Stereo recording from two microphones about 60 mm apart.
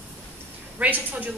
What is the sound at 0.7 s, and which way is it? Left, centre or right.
Speech, right.